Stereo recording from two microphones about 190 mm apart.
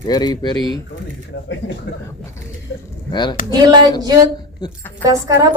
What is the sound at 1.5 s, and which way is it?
Speech, 65° left (ahead or behind).